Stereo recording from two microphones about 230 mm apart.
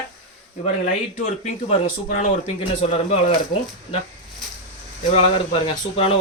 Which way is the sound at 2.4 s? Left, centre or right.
Left.